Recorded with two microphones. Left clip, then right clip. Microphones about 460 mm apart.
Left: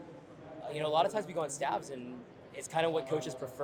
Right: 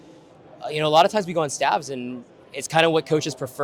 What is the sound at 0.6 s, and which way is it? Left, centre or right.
A man's voice, right.